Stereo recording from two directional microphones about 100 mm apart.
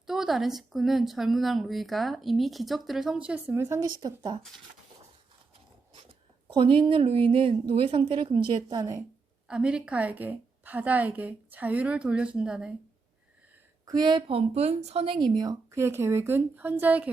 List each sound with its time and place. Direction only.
0.1 s speech: 5° right (ahead or behind); by 3.8 s 25° right (ahead or behind)
3.8 s speech: 45° right (ahead or behind)
5.9 s a sound: 60° right (ahead or behind)
7.7 s a woman's voice: 70° right (ahead or behind)
9.5 s a woman's voice: 10° right (ahead or behind)
13.8 s a woman's voice: 45° right (ahead or behind)
15.7 s a woman's voice: 25° right (ahead or behind)